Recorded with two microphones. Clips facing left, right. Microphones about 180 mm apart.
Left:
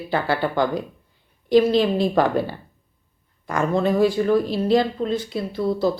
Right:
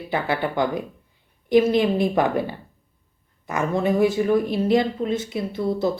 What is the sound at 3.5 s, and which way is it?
Speech, 20° right (ahead or behind).